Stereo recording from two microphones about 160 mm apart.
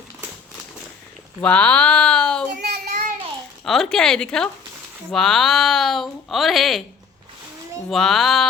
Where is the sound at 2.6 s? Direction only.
80° right.